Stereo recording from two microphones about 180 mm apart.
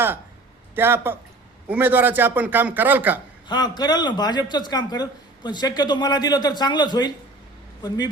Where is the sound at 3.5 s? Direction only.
25° left (ahead or behind).